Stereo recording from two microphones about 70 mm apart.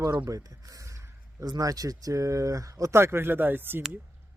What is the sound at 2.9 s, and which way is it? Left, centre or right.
Speech, right.